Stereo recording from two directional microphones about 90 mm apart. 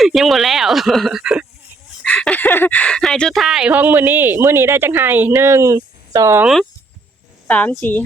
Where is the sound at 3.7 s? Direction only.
20° right (ahead or behind); by 6.3 s 40° right (ahead or behind).